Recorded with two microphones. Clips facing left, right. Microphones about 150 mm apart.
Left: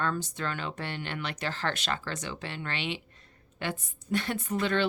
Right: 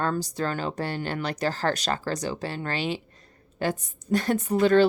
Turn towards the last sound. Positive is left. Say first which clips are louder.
# right 9 dB
turn(degrees=-40)  # may be behind; listen again after turning